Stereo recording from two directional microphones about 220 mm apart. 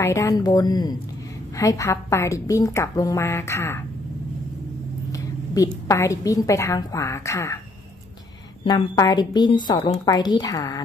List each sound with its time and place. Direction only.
0.0 s a woman's voice: 15° left (ahead or behind)
5.1 s a woman's voice: 15° left (ahead or behind)
8.6 s a woman's voice: 20° left (ahead or behind)